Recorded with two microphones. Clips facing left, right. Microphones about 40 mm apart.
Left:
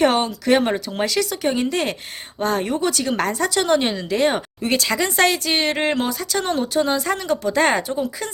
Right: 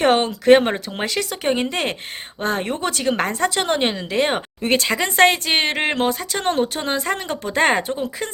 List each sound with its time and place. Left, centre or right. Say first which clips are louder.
0.0 s speech: right 1 dB; right
0.7 s speech: left 2 dB; centre